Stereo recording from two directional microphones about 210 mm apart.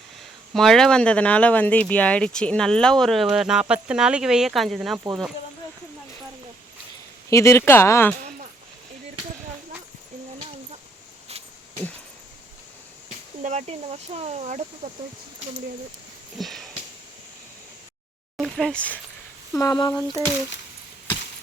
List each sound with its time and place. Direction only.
0.5 s speech: centre (ahead or behind)
7.3 s speech: 15° left (ahead or behind)
11.3 s a sound: 30° right (ahead or behind)
13.4 s speech: 35° right (ahead or behind)
16.4 s sniff: centre (ahead or behind)
18.3 s speech: centre (ahead or behind)
19.5 s speech: 20° left (ahead or behind)